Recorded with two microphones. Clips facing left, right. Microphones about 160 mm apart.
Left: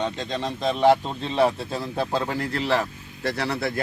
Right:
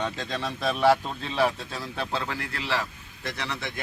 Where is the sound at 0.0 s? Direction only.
25° left (ahead or behind).